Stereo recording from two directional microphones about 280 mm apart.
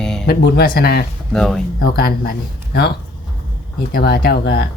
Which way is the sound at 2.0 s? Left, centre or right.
Left.